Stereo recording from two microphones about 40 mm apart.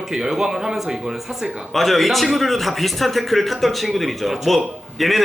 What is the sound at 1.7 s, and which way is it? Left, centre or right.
A man's voice, centre.